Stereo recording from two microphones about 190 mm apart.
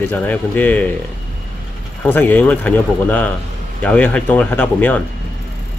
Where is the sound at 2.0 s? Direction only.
10° left (ahead or behind).